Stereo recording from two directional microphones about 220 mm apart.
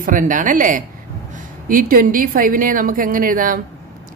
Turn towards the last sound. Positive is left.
turn(degrees=-40)  # may be behind; listen again after turning